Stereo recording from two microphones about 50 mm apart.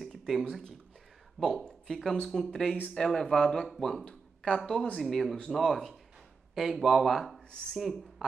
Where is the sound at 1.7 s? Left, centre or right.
Centre.